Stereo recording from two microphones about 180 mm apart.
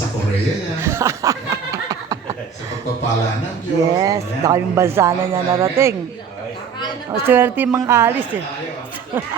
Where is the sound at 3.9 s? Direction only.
20° right (ahead or behind).